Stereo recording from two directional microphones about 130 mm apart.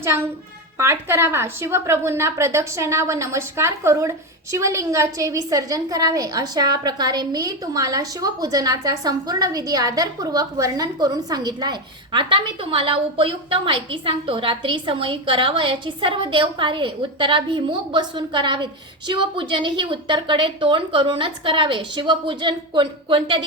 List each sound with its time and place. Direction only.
0.0 s a woman's voice: 20° right (ahead or behind); by 23.5 s 40° right (ahead or behind)